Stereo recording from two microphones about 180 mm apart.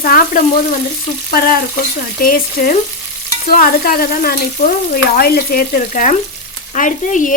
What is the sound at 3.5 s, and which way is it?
Speech, 55° left (ahead or behind).